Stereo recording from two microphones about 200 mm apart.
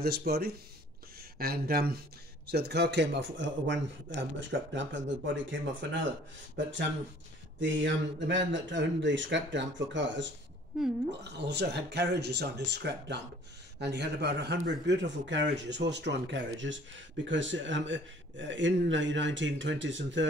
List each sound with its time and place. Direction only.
0.0 s a man's voice: 50° right (ahead or behind); by 20.2 s 70° right (ahead or behind)